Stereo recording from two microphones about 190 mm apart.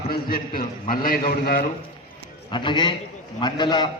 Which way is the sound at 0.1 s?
50° left (ahead or behind).